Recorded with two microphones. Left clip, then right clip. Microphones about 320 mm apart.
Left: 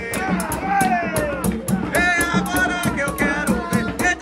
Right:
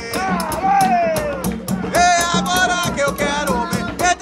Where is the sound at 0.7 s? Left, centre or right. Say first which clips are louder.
Right 3 dB; right.